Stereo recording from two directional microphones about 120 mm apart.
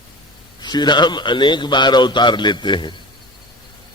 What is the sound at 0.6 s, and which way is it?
A man's voice, 35° left (ahead or behind).